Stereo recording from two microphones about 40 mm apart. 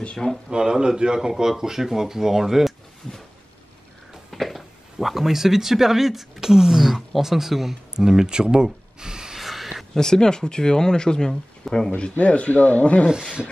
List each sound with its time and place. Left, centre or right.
0.0 s speech: left
0.5 s speech: centre
1.3 s speech: centre
4.3 s a sound: centre
5.0 s speech: centre
9.0 s gasp: centre
9.4 s a sound: centre
9.9 s speech: centre
12.0 s speech: left